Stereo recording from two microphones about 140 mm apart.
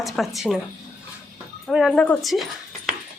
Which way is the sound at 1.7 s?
Centre (ahead or behind).